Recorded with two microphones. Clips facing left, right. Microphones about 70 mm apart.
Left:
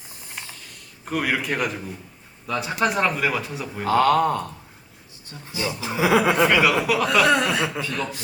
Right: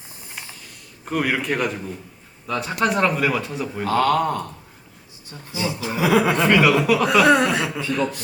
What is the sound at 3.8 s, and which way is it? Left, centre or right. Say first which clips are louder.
Speech: left 1 dB; centre.